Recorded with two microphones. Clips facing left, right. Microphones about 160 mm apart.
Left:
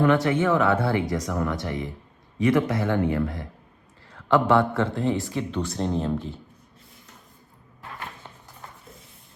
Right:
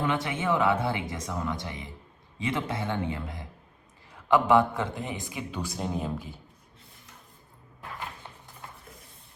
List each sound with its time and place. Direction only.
0.0 s a man's voice: 20° right (ahead or behind)